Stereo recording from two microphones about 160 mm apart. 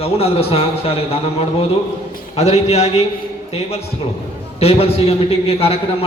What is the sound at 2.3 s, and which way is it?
Speech, 40° left (ahead or behind).